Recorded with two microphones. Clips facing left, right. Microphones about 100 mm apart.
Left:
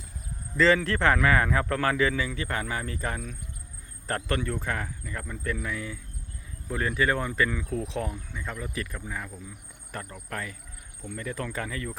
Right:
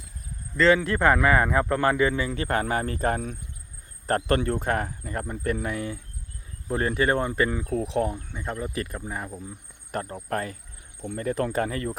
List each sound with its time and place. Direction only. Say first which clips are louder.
0.5 s speech: right 2 dB; centre (ahead or behind); by 2.2 s 20° right (ahead or behind)
2.2 s speech: right 5 dB; 50° right (ahead or behind)
6.7 s speech: right 3 dB; 35° right (ahead or behind)
7.6 s speech: right 5 dB; 45° right (ahead or behind)
8.0 s speech: right 5 dB; 30° right (ahead or behind); by 11.9 s 45° right (ahead or behind)